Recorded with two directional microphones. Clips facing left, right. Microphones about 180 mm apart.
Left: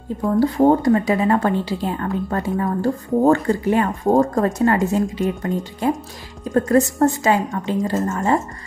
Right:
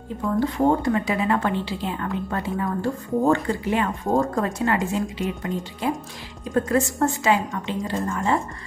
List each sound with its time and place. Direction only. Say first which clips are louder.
0.4 s a woman's voice: left 6 dB; 35° left (ahead or behind)